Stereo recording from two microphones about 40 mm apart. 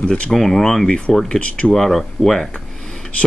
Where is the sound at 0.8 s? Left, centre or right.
Left.